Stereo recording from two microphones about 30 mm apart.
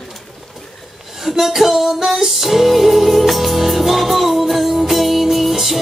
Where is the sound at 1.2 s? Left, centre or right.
Centre.